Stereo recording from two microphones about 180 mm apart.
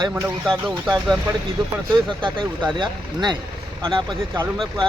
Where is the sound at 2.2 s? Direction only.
25° right (ahead or behind).